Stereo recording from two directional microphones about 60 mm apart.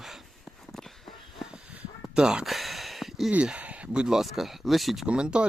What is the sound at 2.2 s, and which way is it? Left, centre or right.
Speech, centre.